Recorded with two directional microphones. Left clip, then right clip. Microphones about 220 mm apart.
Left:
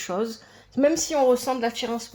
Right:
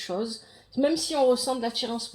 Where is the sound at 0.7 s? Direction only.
25° left (ahead or behind).